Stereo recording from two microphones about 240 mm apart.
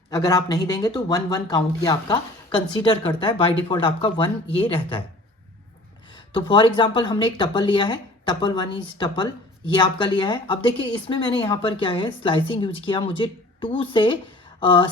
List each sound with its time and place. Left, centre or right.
0.1 s a woman's voice: centre
6.3 s a woman's voice: left